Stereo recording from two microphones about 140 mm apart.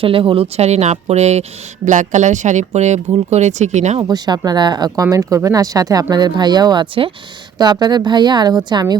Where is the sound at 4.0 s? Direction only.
30° right (ahead or behind).